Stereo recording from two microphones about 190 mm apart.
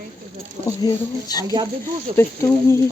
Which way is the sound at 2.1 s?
40° right (ahead or behind).